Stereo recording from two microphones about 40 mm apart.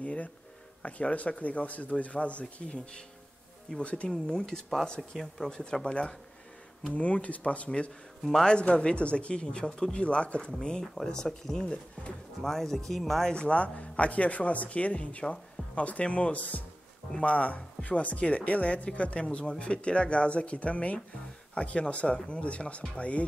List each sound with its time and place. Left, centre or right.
0.0 s a sound: left
0.8 s a man's voice: left
4.4 s a man's voice: centre
10.0 s speech: left; by 11.6 s centre
11.6 s speech: left
12.4 s speech: centre
13.3 s a man's voice: left